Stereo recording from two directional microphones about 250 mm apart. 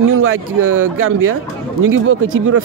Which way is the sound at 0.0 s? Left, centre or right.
Right.